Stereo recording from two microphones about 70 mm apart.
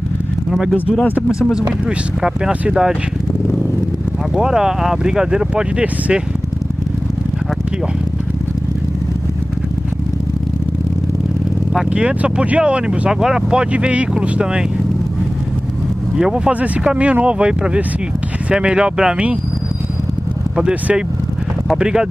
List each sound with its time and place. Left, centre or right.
0.5 s speech: centre
2.7 s speech: centre
4.4 s speech: centre
11.9 s speech: centre
16.2 s speech: centre
20.5 s speech: centre